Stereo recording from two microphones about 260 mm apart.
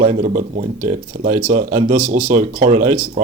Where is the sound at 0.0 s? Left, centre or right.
Right.